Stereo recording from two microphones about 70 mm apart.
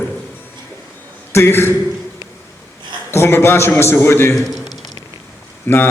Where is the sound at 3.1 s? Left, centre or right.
Left.